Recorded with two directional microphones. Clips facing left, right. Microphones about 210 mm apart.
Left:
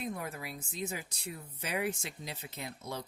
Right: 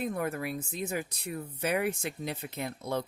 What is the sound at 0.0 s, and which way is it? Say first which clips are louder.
Speech: right 7 dB; 55° right (ahead or behind).